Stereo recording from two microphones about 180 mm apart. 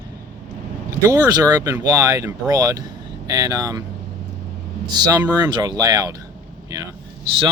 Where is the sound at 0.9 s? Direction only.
15° right (ahead or behind).